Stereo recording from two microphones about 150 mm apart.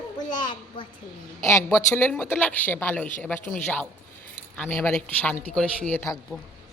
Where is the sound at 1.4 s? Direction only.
15° left (ahead or behind).